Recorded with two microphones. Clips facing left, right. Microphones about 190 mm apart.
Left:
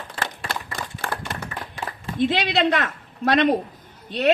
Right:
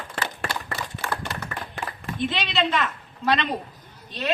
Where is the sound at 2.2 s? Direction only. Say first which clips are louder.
Left 5 dB; 75° left (ahead or behind).